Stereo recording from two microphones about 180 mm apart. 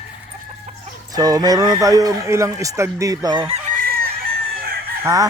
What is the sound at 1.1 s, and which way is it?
Speech, 20° right (ahead or behind).